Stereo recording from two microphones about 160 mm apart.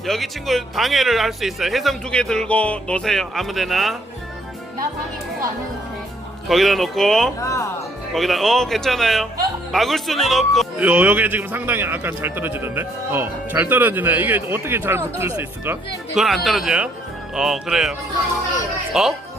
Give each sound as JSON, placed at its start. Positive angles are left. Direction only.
{"t": 0.0, "sound": "speech", "side_deg": 0}
{"t": 6.5, "sound": "speech", "side_deg": 0}
{"t": 7.3, "sound": "speech", "side_deg": 20}
{"t": 8.1, "sound": "speech", "side_deg": 0}
{"t": 10.8, "sound": "a man's voice", "side_deg": -10}
{"t": 16.1, "sound": "speech", "side_deg": 0}
{"t": 18.9, "sound": "speech", "side_deg": -5}